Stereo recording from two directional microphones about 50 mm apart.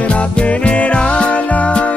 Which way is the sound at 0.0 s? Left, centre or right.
Left.